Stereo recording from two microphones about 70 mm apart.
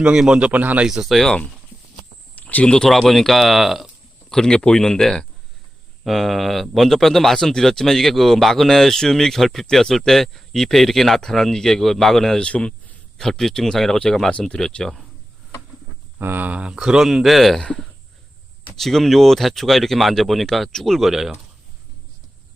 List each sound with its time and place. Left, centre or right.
0.0 s speech: centre
0.9 s speech: centre
2.3 s a sound: left
2.7 s speech: centre
4.3 s speech: centre
16.1 s speech: right; by 21.3 s centre